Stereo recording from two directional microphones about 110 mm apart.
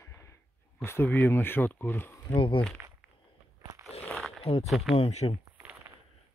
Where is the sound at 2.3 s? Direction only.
50° left (ahead or behind).